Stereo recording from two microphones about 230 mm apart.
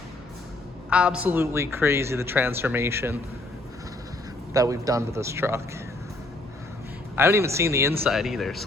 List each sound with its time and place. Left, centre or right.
0.9 s speech: centre
4.5 s speech: centre
7.2 s speech: centre
8.0 s speech: centre